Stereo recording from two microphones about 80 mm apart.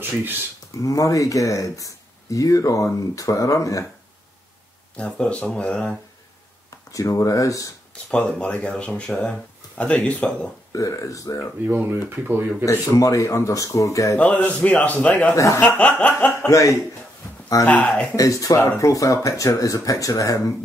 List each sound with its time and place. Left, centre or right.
0.7 s speech: left
4.9 s speech: centre
6.9 s speech: left
8.1 s speech: centre
10.7 s speech: left
11.6 s speech: right
12.6 s speech: left
14.1 s speech: centre
15.3 s speech: left
15.6 s snicker: left
16.3 s speech: left
17.6 s snicker: centre
18.1 s speech: left